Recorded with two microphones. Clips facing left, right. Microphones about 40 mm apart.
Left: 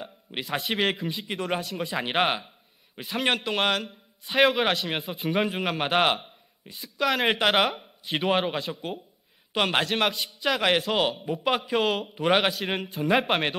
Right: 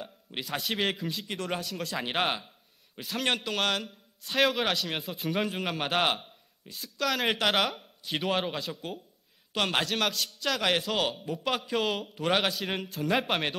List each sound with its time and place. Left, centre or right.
0.0 s a man's voice: centre